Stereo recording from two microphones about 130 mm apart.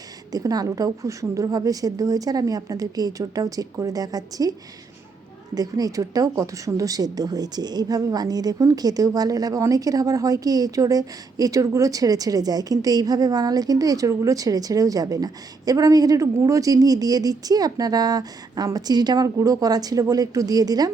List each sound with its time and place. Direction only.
0.3 s speech: 30° right (ahead or behind)
5.5 s speech: 30° right (ahead or behind)